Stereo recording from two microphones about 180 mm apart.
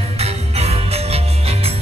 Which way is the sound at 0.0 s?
35° right (ahead or behind).